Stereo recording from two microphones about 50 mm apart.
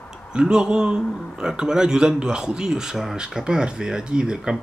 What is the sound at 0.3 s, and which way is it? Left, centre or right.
Speech, centre.